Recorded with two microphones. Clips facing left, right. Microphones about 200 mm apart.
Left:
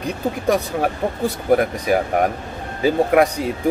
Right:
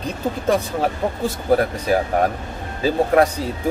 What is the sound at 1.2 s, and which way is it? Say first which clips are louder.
Speech: left 1 dB; 15° left (ahead or behind).